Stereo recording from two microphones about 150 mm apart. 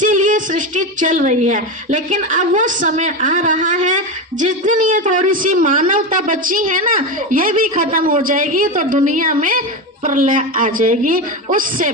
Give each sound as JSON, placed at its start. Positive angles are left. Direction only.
{"t": 0.0, "sound": "a woman's voice", "side_deg": -60}